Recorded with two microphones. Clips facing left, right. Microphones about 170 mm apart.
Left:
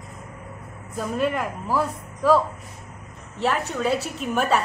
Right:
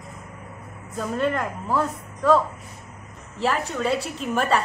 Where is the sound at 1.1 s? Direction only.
5° left (ahead or behind).